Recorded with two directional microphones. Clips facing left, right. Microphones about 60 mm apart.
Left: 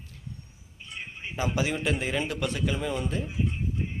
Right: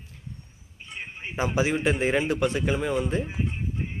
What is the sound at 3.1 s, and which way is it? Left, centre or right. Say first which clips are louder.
Speech: right 3 dB; right.